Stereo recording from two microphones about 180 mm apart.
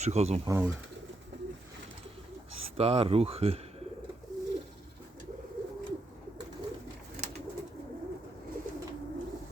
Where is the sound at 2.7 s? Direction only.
35° right (ahead or behind).